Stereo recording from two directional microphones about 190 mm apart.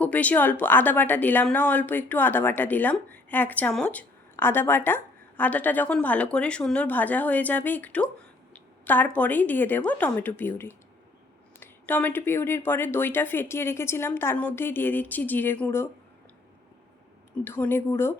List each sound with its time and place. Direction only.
0.0 s a woman's voice: 10° left (ahead or behind)
17.4 s a woman's voice: 10° left (ahead or behind)